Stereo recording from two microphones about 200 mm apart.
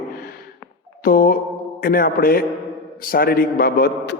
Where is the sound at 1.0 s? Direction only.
45° left (ahead or behind).